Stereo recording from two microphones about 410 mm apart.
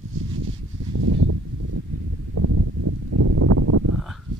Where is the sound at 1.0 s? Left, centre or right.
Right.